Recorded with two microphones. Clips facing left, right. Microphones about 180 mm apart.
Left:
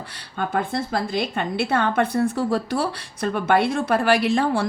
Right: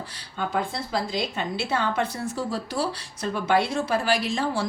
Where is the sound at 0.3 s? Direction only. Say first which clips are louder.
Left 4 dB; 55° left (ahead or behind).